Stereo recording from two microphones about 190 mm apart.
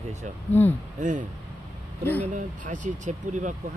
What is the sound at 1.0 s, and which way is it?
Speech, 40° right (ahead or behind).